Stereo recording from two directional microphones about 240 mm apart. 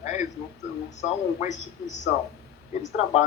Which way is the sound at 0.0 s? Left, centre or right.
Left.